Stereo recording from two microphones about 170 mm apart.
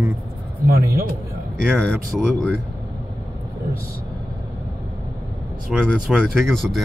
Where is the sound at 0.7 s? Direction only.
60° right (ahead or behind).